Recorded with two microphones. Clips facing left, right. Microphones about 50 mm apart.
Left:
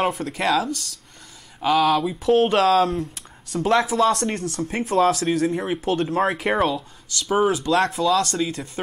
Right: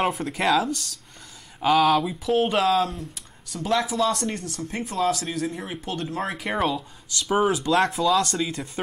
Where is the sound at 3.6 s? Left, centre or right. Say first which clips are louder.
Left 4 dB; left.